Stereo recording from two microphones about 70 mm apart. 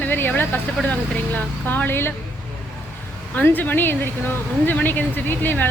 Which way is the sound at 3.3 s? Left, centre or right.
Left.